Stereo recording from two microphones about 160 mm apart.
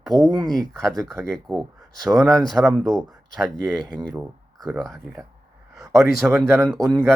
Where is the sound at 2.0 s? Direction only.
20° right (ahead or behind).